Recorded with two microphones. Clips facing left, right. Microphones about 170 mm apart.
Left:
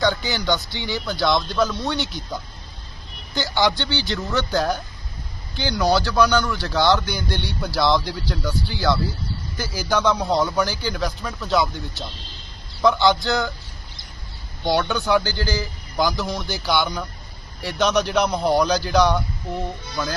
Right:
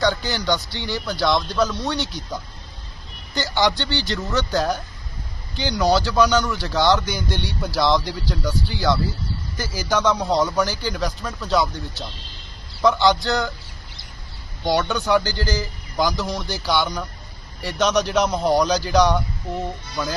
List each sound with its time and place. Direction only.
0.0 s a man's voice: centre (ahead or behind)
3.3 s a man's voice: centre (ahead or behind)
12.8 s a man's voice: 5° left (ahead or behind)
14.7 s a man's voice: 5° left (ahead or behind)